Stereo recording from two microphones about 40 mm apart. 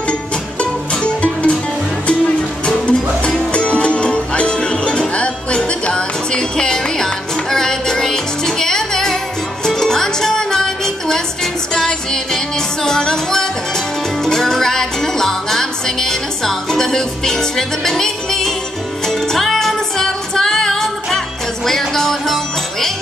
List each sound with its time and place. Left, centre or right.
0.6 s music: left; by 22.8 s centre